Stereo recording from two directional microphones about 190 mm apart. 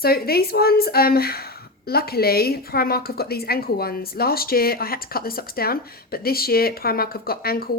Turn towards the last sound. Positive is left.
turn(degrees=55)  # may be behind; listen again after turning